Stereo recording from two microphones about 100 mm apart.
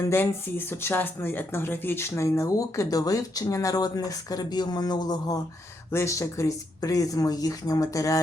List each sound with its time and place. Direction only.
0.0 s speech: 20° left (ahead or behind); by 5.4 s 40° left (ahead or behind)
5.9 s speech: 30° left (ahead or behind)